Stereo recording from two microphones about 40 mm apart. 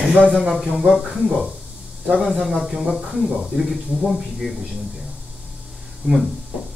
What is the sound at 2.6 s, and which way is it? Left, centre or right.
Speech, centre.